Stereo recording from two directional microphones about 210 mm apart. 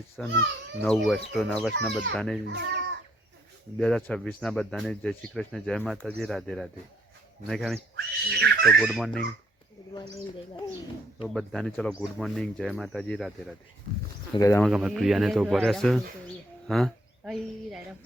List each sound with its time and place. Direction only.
0.2 s speech: 5° left (ahead or behind)
2.5 s speech: 55° right (ahead or behind)
3.8 s speech: 5° left (ahead or behind)
7.9 s speech: 50° right (ahead or behind)
8.6 s speech: centre (ahead or behind)
11.2 s speech: centre (ahead or behind)
14.3 s speech: 15° left (ahead or behind)
14.6 s speech: 5° right (ahead or behind)
16.6 s a sound: centre (ahead or behind)